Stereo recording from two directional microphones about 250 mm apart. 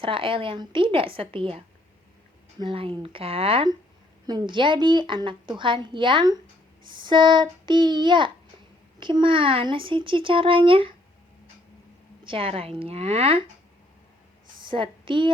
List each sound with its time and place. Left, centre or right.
0.0 s a woman's voice: right
12.2 s a woman's voice: right
14.6 s a woman's voice: centre